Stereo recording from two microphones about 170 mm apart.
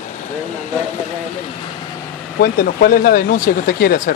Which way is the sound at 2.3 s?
65° left (ahead or behind).